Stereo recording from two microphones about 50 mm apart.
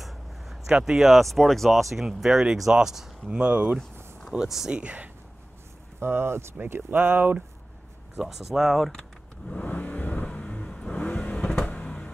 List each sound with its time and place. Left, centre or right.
0.0 s a sound: centre
0.7 s speech: centre
1.2 s speech: centre
3.3 s speech: right
4.3 s speech: centre
4.6 s speech: right
5.9 s speech: right
6.6 s speech: right
8.2 s speech: centre
9.7 s vehicle: left
11.6 s a sound: left